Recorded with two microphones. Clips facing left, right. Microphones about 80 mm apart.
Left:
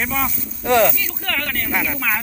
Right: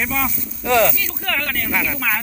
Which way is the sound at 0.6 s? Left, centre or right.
Left.